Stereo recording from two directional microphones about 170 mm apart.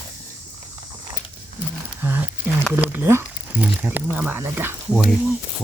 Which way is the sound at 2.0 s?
10° right (ahead or behind).